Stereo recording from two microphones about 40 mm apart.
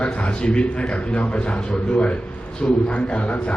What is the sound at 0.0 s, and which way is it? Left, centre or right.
A man's voice, left.